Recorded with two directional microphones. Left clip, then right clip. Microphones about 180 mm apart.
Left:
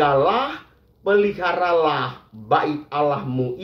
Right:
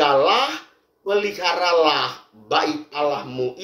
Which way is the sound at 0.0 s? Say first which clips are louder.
Right 1 dB; 20° right (ahead or behind).